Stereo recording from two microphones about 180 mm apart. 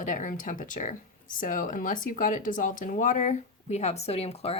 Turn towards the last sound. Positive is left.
turn(degrees=35)  # may be behind; listen again after turning